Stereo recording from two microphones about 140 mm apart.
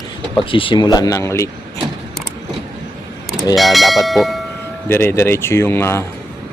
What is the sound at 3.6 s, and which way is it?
Speech, centre (ahead or behind).